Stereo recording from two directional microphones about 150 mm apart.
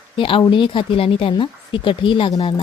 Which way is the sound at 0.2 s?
35° left (ahead or behind).